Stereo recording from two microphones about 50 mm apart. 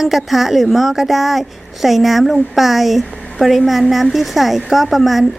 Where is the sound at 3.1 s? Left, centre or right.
Centre.